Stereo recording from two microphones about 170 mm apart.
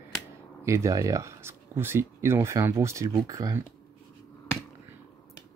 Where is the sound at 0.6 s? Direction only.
15° right (ahead or behind).